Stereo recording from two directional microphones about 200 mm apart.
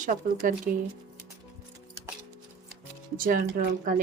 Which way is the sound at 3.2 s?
45° right (ahead or behind).